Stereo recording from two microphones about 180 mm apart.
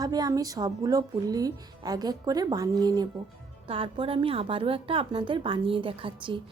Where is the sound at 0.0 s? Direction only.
20° right (ahead or behind).